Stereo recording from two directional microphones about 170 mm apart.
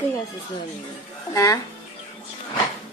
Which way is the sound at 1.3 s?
20° left (ahead or behind).